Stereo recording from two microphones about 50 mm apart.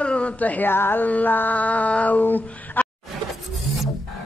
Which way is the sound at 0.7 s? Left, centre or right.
Left.